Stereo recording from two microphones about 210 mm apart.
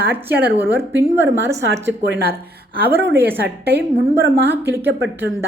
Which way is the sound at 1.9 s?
55° right (ahead or behind).